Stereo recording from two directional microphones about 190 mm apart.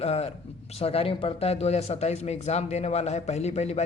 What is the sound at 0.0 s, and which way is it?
Speech, 35° left (ahead or behind).